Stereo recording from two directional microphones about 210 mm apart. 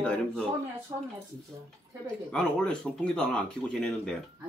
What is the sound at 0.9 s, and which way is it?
Speech, 20° right (ahead or behind).